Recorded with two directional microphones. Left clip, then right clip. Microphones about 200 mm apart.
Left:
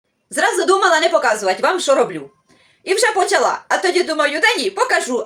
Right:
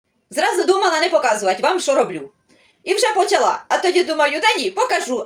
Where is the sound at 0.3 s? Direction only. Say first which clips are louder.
Left 1 dB; 15° left (ahead or behind).